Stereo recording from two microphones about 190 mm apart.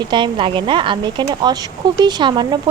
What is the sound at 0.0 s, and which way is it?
A woman's voice, 25° right (ahead or behind).